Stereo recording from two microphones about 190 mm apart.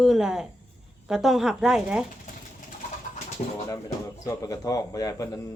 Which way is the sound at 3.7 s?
15° left (ahead or behind).